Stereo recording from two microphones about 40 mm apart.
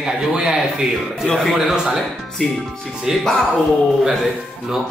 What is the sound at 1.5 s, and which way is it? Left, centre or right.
Speech, centre.